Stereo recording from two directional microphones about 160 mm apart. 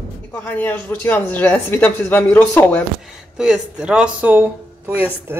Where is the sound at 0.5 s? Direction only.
15° left (ahead or behind).